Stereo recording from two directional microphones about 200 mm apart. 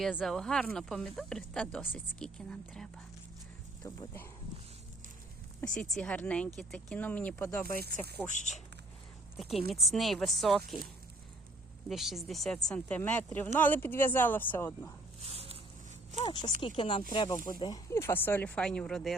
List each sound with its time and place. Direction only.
0.0 s speech: centre (ahead or behind)
5.5 s speech: 5° left (ahead or behind)
7.9 s speech: 50° right (ahead or behind)
8.3 s speech: 35° left (ahead or behind)
9.4 s speech: centre (ahead or behind)
11.9 s speech: centre (ahead or behind)
15.2 s a sound: 30° right (ahead or behind)
16.2 s speech: 25° left (ahead or behind); by 19.1 s centre (ahead or behind)